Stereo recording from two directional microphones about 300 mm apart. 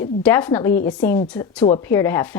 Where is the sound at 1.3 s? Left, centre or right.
Centre.